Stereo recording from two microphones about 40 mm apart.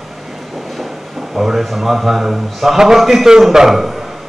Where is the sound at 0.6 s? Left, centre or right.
Centre.